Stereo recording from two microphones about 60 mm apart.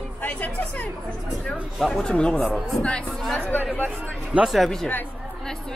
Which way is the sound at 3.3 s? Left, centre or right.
Left.